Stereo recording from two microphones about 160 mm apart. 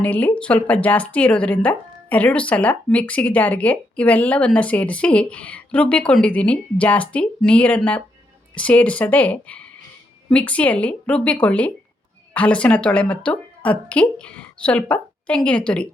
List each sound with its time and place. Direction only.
0.0 s speech: 10° left (ahead or behind)